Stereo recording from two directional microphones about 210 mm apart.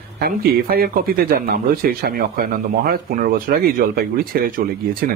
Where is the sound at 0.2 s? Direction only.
45° right (ahead or behind).